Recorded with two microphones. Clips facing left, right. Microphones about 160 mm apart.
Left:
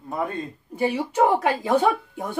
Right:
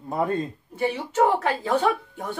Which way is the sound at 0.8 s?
15° left (ahead or behind).